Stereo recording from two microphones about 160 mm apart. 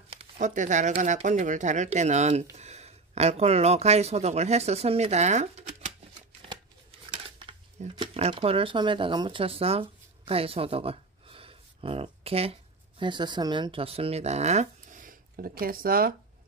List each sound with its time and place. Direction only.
0.4 s speech: 50° right (ahead or behind)
6.4 s a sound: 35° right (ahead or behind)
7.9 s speech: 35° right (ahead or behind); by 16.2 s 65° right (ahead or behind)